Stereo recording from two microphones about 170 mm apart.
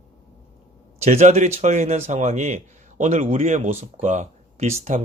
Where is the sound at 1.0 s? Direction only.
40° right (ahead or behind).